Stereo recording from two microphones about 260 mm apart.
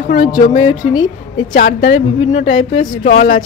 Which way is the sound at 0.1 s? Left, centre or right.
Left.